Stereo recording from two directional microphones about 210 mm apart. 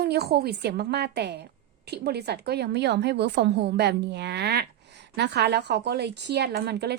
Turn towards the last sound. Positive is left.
turn(degrees=-50)  # may be behind; listen again after turning